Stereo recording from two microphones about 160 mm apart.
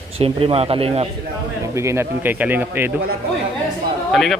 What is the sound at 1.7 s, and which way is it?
Speech, 15° right (ahead or behind).